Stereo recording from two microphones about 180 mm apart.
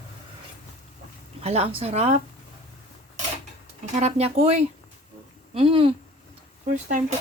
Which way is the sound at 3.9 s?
35° right (ahead or behind).